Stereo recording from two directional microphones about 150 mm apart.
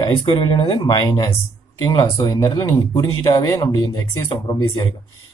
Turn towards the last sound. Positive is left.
turn(degrees=25)  # may be behind; listen again after turning